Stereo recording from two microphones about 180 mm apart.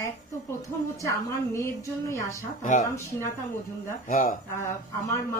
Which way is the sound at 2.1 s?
15° left (ahead or behind).